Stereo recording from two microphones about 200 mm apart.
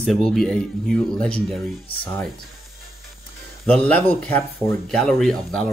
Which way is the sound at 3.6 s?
5° left (ahead or behind).